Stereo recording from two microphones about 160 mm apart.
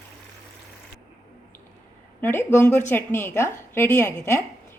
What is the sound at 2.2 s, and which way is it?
A woman's voice, 15° left (ahead or behind).